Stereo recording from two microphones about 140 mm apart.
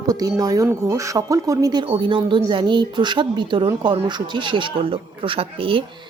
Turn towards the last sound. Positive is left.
turn(degrees=-40)  # may be behind; listen again after turning